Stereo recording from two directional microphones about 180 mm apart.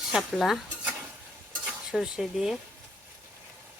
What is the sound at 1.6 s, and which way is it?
Stir, 5° right (ahead or behind).